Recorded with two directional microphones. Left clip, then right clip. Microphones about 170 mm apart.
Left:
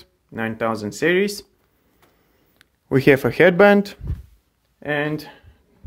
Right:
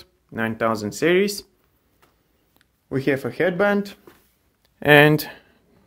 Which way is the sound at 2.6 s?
35° left (ahead or behind).